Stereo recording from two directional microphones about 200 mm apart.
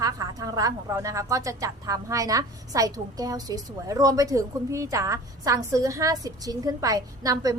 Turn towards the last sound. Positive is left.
turn(degrees=-20)  # may be behind; listen again after turning